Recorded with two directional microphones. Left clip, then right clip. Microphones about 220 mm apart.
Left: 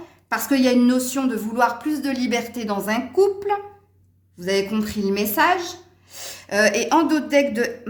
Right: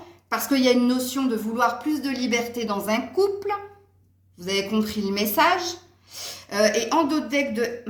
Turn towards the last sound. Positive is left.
turn(degrees=45)  # may be behind; listen again after turning